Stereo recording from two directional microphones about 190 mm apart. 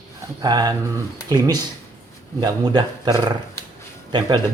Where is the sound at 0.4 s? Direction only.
20° right (ahead or behind).